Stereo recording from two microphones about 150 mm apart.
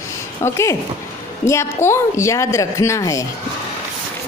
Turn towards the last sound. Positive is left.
turn(degrees=20)  # may be behind; listen again after turning